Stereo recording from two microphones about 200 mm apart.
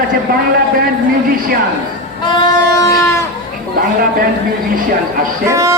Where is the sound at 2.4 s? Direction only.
20° left (ahead or behind).